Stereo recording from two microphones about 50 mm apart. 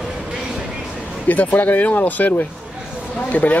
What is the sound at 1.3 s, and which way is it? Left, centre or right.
Speech, left.